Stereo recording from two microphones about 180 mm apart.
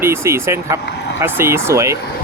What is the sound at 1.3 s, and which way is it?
Speech, 15° right (ahead or behind).